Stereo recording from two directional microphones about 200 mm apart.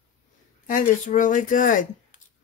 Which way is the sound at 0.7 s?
40° left (ahead or behind).